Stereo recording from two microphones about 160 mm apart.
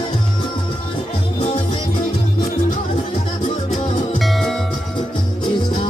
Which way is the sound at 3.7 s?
Centre (ahead or behind).